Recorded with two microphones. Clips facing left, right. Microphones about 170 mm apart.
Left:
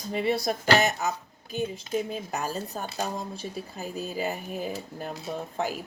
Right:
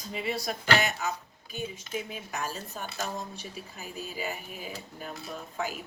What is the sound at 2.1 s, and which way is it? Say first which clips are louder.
Speech: left 5 dB; 35° left (ahead or behind).